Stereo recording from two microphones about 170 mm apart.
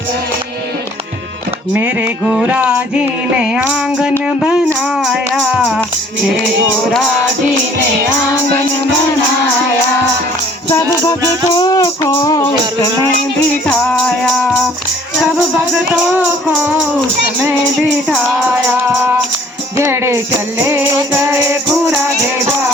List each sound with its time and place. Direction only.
1.7 s a sound: 10° right (ahead or behind)
4.3 s rattle: 5° right (ahead or behind)
10.7 s music: 15° left (ahead or behind)
13.7 s music: 5° left (ahead or behind)
19.7 s music: 15° right (ahead or behind)